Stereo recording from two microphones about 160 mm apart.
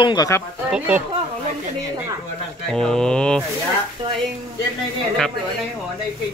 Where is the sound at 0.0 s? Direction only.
25° left (ahead or behind).